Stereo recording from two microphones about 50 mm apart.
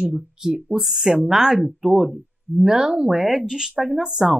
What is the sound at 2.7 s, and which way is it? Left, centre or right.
Speech, centre.